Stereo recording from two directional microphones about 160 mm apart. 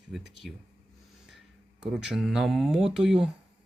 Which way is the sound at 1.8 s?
5° right (ahead or behind).